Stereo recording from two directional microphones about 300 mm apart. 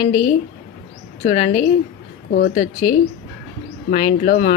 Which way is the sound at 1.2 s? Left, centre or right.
Left.